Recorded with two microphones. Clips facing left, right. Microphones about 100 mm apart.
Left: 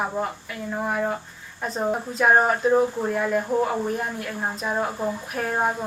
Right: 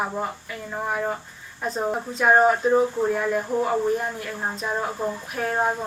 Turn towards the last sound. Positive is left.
turn(degrees=5)  # may be behind; listen again after turning